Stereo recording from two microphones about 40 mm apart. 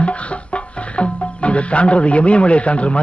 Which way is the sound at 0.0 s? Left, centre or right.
Left.